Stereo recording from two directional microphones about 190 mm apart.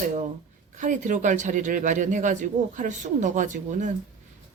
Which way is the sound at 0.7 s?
40° right (ahead or behind).